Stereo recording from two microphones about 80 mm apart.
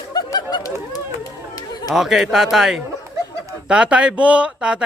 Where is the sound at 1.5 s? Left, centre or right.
Left.